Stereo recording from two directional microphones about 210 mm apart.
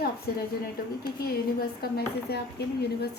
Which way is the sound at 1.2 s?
45° left (ahead or behind).